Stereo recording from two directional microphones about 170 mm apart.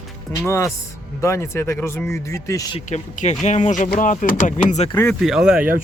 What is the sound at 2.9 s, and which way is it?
Speech, 45° left (ahead or behind).